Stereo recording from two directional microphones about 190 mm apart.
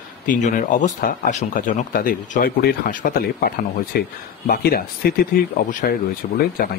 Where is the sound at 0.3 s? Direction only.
40° left (ahead or behind).